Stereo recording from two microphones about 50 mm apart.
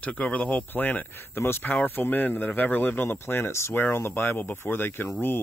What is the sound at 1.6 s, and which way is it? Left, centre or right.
Speech, left.